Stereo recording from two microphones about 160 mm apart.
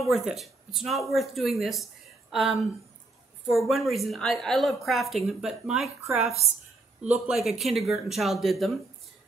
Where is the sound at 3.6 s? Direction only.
Centre (ahead or behind).